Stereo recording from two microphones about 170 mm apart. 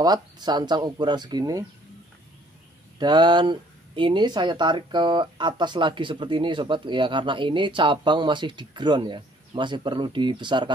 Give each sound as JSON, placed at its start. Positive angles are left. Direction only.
{"t": 0.0, "sound": "speech", "side_deg": -25}
{"t": 3.0, "sound": "speech", "side_deg": -25}